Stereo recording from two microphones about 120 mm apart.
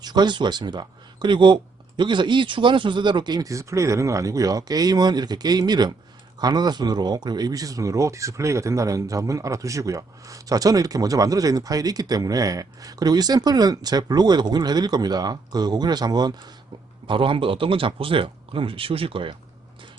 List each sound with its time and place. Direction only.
0.0 s speech: 35° right (ahead or behind)
17.1 s speech: 45° right (ahead or behind)